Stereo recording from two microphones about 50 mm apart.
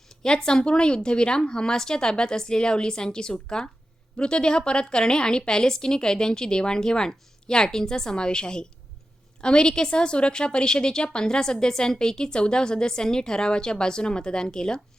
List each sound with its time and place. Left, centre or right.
0.2 s speech: centre